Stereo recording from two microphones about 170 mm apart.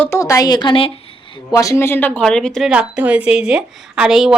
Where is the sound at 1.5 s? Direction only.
20° left (ahead or behind).